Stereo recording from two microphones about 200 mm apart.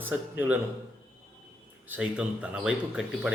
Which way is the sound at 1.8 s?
5° right (ahead or behind).